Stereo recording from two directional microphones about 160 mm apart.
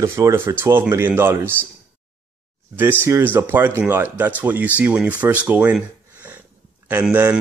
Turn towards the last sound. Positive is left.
turn(degrees=-10)  # may be behind; listen again after turning